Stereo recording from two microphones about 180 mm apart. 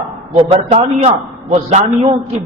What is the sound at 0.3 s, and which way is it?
A man's voice, 35° right (ahead or behind).